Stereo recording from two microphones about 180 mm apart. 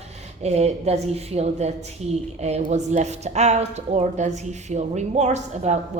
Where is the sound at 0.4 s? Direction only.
35° right (ahead or behind).